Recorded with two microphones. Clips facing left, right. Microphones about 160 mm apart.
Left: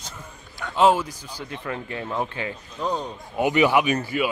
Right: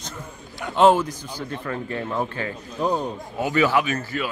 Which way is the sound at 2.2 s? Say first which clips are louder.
Right 2 dB; 20° left (ahead or behind).